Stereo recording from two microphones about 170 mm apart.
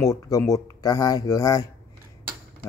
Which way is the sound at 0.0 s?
20° left (ahead or behind).